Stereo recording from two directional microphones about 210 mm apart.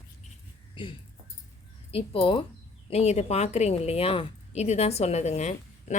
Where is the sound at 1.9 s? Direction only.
25° left (ahead or behind).